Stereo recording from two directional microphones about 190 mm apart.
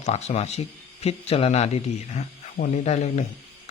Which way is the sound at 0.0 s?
35° left (ahead or behind).